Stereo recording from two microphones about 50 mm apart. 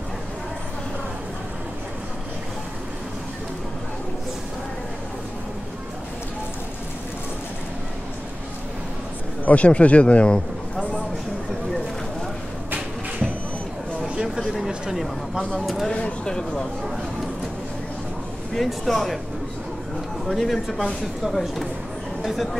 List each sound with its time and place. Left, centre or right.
9.4 s speech: left
14.0 s a sound: centre
15.6 s speech: centre
15.9 s speech: left
18.5 s speech: centre
20.2 s speech: centre